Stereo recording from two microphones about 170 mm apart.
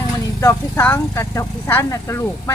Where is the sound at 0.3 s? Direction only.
15° left (ahead or behind).